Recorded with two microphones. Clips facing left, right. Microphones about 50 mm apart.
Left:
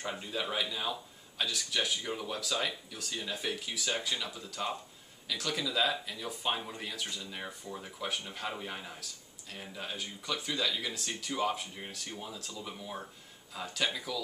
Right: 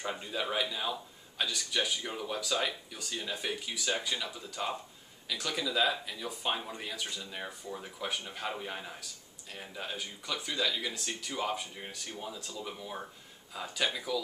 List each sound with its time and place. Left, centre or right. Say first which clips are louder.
0.0 s speech: right 1 dB; centre